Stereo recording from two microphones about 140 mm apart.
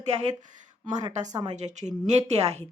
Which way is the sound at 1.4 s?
55° right (ahead or behind).